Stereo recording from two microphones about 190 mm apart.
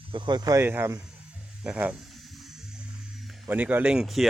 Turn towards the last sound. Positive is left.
turn(degrees=0)  # may be behind; listen again after turning